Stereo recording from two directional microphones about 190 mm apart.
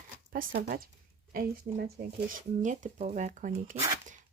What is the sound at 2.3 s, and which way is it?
Speech, 40° right (ahead or behind).